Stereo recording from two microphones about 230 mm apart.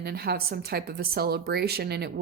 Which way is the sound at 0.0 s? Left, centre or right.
Right.